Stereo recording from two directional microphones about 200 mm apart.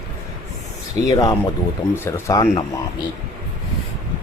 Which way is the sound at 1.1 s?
20° left (ahead or behind).